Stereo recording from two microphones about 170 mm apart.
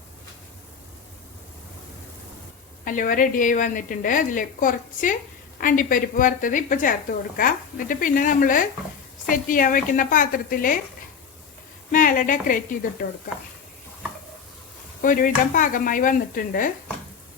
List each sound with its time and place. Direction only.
2.8 s a woman's voice: 50° left (ahead or behind)
11.9 s a woman's voice: 50° left (ahead or behind)
15.0 s a woman's voice: 50° left (ahead or behind)